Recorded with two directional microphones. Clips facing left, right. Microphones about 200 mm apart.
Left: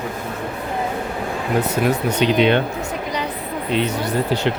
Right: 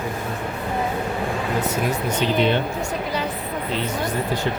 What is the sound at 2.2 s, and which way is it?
Speech, 70° left (ahead or behind).